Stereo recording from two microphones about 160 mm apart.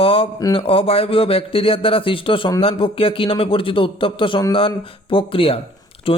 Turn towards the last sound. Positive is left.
turn(degrees=35)  # may be behind; listen again after turning